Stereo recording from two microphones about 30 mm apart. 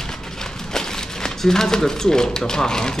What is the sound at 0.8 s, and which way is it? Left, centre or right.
Speech, centre.